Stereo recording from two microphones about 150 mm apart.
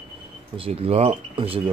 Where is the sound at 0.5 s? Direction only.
40° right (ahead or behind).